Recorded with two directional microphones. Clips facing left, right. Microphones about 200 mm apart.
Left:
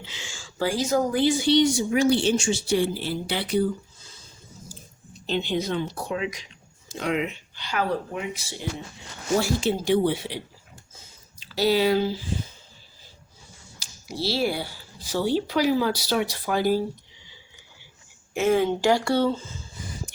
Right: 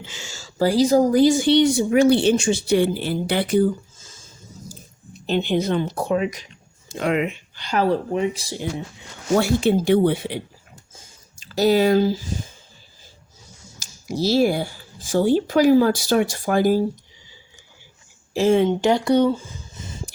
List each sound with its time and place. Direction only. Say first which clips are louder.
0.0 s speech: right 3 dB; 45° right (ahead or behind)
9.4 s speech: right 6 dB; 55° right (ahead or behind)
10.9 s a sound: right 2 dB; 45° right (ahead or behind)
13.7 s speech: right 7 dB; 45° right (ahead or behind)
18.3 s speech: right 4 dB; 30° right (ahead or behind)